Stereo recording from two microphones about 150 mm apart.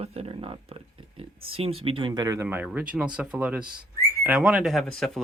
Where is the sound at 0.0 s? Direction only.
45° right (ahead or behind).